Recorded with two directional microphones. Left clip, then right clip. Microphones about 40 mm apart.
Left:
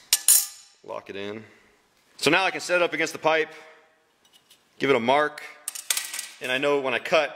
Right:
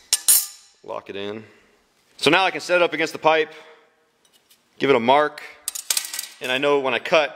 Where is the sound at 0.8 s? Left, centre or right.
Right.